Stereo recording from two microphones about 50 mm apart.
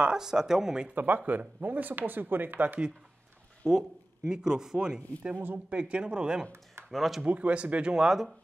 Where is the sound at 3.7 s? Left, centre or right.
Centre.